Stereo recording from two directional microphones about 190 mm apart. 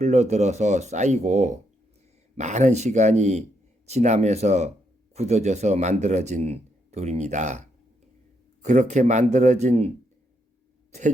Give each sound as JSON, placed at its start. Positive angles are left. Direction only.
{"t": 0.0, "sound": "speech", "side_deg": -35}